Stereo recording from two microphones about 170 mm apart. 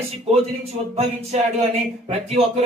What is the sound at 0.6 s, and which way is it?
A man's voice, 35° right (ahead or behind).